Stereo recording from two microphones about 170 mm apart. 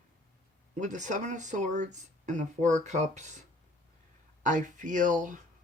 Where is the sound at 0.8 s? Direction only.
45° right (ahead or behind).